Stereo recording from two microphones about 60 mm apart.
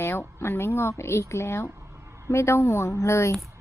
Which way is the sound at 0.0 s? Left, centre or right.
Left.